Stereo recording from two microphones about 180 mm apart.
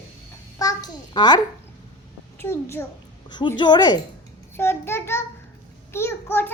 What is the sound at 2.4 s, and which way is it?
Speech, 15° left (ahead or behind).